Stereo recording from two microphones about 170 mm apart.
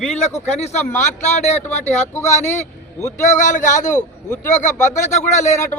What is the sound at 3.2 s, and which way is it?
Speech, 45° left (ahead or behind).